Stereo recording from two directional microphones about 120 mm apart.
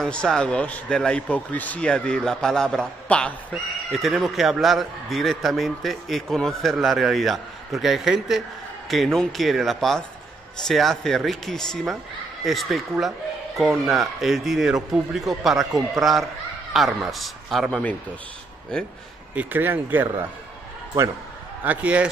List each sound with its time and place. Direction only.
0.0 s a man's voice: 5° left (ahead or behind)
17.6 s speech: 10° left (ahead or behind)
19.3 s speech: 15° right (ahead or behind)
21.6 s speech: 10° right (ahead or behind)